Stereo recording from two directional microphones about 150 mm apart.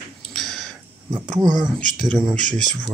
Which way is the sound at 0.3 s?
Centre (ahead or behind).